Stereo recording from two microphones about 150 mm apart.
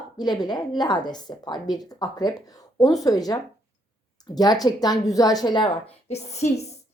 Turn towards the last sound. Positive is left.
turn(degrees=45)  # may be behind; listen again after turning